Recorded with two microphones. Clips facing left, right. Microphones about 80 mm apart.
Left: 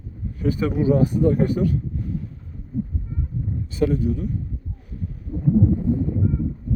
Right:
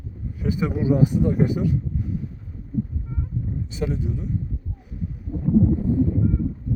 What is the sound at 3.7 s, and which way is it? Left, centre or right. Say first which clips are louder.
Speech: left 7 dB; centre.